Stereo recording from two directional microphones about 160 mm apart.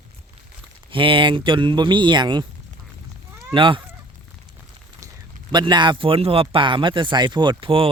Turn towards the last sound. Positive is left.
turn(degrees=-35)  # may be behind; listen again after turning